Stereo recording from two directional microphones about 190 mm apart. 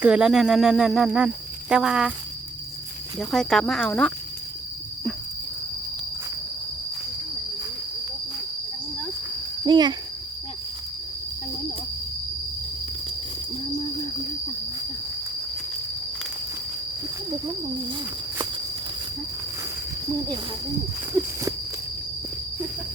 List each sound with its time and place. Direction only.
0.0 s speech: 5° right (ahead or behind)
3.2 s speech: 5° left (ahead or behind)
9.6 s speech: 20° right (ahead or behind)
21.2 s walk: 15° right (ahead or behind)